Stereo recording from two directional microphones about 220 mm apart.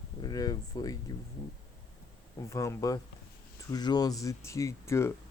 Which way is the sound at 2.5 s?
15° left (ahead or behind).